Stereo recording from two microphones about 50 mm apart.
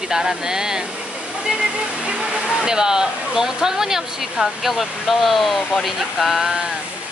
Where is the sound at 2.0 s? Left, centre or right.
Centre.